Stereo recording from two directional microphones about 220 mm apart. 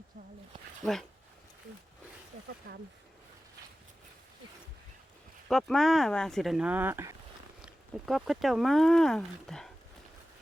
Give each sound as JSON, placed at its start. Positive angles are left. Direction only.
{"t": 2.7, "sound": "speech", "side_deg": -45}
{"t": 5.5, "sound": "speech", "side_deg": 0}